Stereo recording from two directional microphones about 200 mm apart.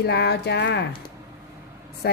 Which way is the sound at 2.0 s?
55° left (ahead or behind).